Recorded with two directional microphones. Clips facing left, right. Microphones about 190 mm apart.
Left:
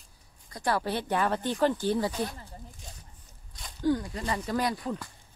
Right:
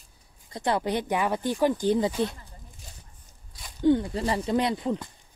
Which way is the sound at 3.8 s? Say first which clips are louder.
Right 5 dB; 25° right (ahead or behind).